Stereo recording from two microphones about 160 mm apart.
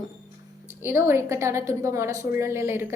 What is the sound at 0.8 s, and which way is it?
A woman's voice, 15° right (ahead or behind).